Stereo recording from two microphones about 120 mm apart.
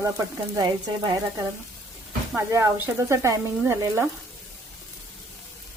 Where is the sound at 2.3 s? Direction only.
25° right (ahead or behind).